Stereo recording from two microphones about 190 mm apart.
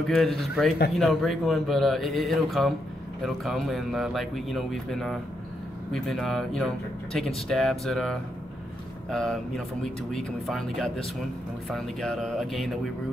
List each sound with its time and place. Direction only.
0.0 s speech: centre (ahead or behind)